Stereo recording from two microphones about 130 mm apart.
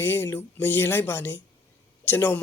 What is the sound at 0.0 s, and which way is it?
Speech, 15° left (ahead or behind).